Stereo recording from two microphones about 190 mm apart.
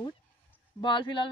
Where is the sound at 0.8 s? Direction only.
25° left (ahead or behind).